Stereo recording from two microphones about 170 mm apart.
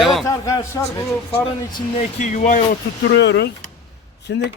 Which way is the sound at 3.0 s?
90° left.